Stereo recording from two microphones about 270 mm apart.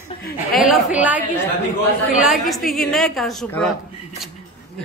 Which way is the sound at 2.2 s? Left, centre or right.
Centre.